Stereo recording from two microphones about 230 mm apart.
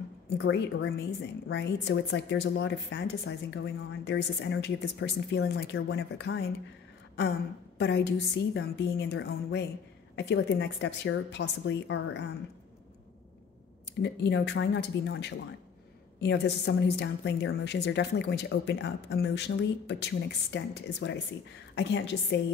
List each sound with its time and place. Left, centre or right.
0.4 s a woman's voice: left
14.0 s a woman's voice: left